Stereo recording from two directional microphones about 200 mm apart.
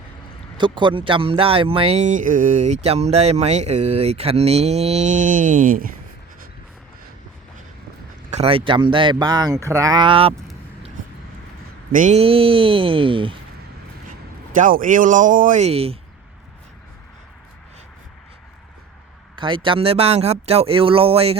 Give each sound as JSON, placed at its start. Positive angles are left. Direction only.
{"t": 0.5, "sound": "speech", "side_deg": -25}
{"t": 8.3, "sound": "speech", "side_deg": -30}
{"t": 11.9, "sound": "speech", "side_deg": -40}
{"t": 14.5, "sound": "speech", "side_deg": -40}
{"t": 19.4, "sound": "speech", "side_deg": -25}